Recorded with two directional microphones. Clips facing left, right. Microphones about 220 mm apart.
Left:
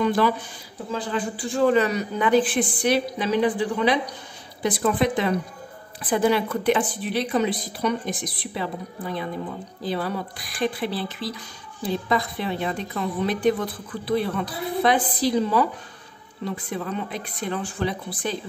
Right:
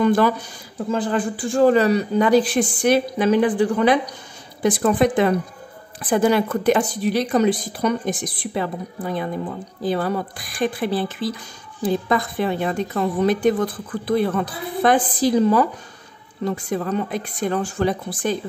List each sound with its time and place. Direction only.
0.0 s a woman's voice: 50° right (ahead or behind)
9.8 s a woman's voice: 50° right (ahead or behind)